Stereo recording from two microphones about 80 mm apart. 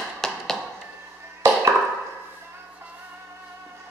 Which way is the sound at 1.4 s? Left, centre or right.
Right.